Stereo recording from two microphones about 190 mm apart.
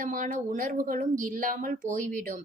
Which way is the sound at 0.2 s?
45° right (ahead or behind).